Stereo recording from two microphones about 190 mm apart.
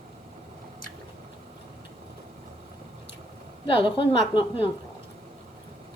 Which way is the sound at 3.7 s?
30° left (ahead or behind).